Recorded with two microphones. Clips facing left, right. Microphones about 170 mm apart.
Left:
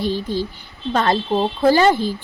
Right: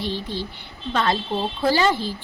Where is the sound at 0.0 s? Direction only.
45° left (ahead or behind).